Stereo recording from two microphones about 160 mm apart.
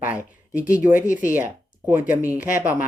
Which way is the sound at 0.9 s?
55° left (ahead or behind).